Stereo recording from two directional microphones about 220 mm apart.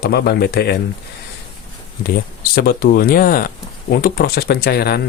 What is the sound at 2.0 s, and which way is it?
Speech, 40° left (ahead or behind).